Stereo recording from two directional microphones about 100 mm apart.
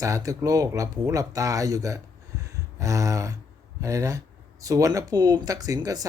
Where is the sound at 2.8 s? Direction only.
35° right (ahead or behind).